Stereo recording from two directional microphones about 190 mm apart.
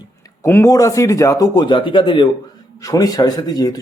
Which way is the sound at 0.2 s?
15° left (ahead or behind).